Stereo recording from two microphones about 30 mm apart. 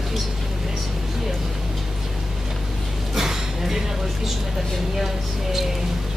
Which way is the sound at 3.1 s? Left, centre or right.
Centre.